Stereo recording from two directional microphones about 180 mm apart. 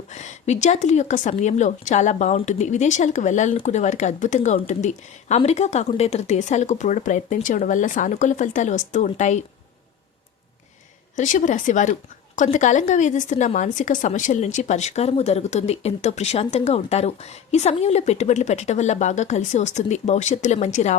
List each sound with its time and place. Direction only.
0.1 s a woman's voice: 40° left (ahead or behind)
11.2 s a woman's voice: 45° left (ahead or behind)